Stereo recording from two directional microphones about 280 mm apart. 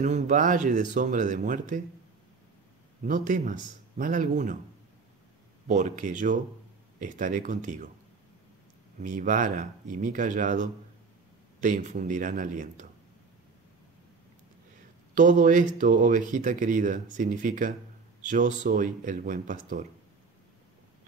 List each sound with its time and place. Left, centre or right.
0.0 s speech: right
3.0 s speech: right
5.7 s speech: right
9.0 s speech: right
15.1 s speech: right